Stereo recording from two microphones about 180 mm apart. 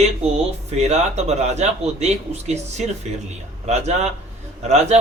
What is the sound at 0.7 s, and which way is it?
A man's voice, 35° right (ahead or behind).